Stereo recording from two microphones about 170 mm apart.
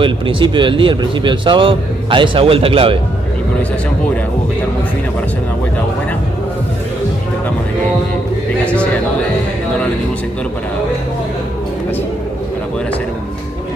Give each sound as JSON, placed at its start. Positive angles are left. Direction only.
{"t": 0.0, "sound": "speech", "side_deg": -30}